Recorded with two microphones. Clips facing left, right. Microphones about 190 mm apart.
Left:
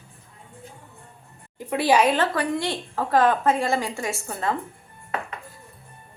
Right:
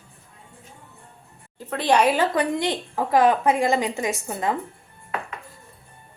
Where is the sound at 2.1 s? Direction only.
15° right (ahead or behind).